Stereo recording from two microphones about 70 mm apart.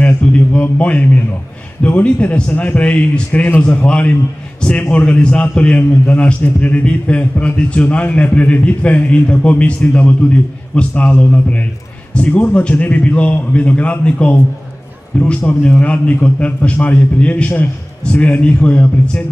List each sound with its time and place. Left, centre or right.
0.2 s a man's voice: centre